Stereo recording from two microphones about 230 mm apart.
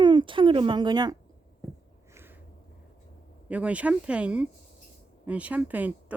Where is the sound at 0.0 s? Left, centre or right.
Centre.